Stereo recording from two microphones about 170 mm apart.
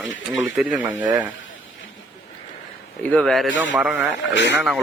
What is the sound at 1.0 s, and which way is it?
Speech, 25° right (ahead or behind).